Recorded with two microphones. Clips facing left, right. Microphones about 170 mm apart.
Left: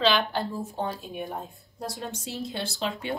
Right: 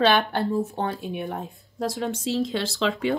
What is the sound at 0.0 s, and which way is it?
Speech, 60° right (ahead or behind).